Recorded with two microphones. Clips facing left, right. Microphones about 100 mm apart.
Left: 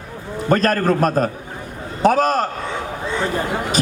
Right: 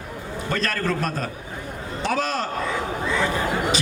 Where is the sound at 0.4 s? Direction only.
45° left (ahead or behind).